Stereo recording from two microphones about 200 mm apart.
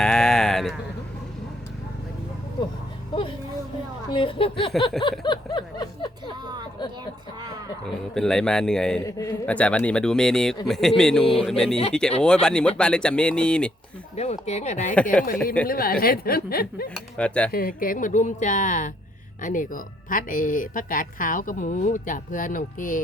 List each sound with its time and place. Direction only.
0.0 s a sound: 5° left (ahead or behind)
3.1 s a sound: 25° left (ahead or behind)
4.1 s speech: 25° left (ahead or behind)
5.2 s a sound: 20° left (ahead or behind)
7.9 s speech: centre (ahead or behind)
9.0 s speech: 15° left (ahead or behind)
14.2 s speech: 35° left (ahead or behind)
15.6 s speech: 45° left (ahead or behind)
17.2 s speech: 5° left (ahead or behind)
17.5 s speech: 45° left (ahead or behind)